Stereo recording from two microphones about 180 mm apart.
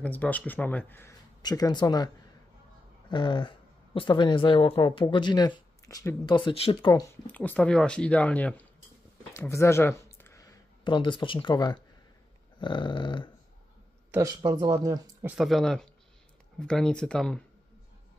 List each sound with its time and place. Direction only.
0.0 s speech: 10° left (ahead or behind)
1.4 s speech: 20° left (ahead or behind)
3.1 s speech: 25° left (ahead or behind)
7.2 s speech: 10° left (ahead or behind); by 13.3 s 25° left (ahead or behind)
14.1 s speech: 20° right (ahead or behind)
15.2 s speech: centre (ahead or behind)